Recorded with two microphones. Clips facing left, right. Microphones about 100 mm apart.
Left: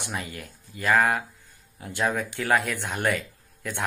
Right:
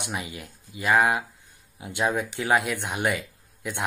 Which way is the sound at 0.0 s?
15° right (ahead or behind).